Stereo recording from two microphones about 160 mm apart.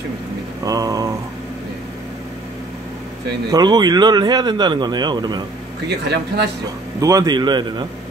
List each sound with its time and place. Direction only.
0.7 s a sound: 25° right (ahead or behind)
3.4 s speech: 25° right (ahead or behind)
5.9 s speech: 90° right
7.0 s speech: 20° right (ahead or behind)